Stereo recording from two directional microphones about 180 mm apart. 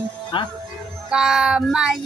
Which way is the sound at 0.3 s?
30° left (ahead or behind).